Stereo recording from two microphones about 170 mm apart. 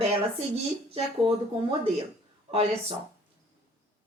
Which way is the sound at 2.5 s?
35° right (ahead or behind).